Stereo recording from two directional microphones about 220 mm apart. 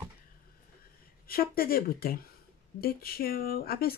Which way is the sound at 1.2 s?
40° left (ahead or behind).